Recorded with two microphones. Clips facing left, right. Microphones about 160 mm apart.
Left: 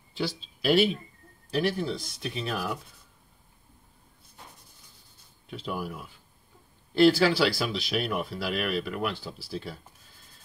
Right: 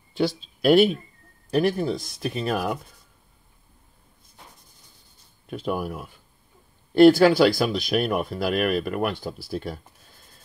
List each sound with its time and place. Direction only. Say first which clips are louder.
0.1 s speech: right 7 dB; 45° right (ahead or behind)
5.5 s speech: right 6 dB; 50° right (ahead or behind)